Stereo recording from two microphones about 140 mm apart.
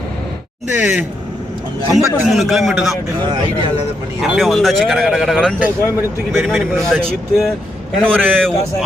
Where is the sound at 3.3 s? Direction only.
35° right (ahead or behind).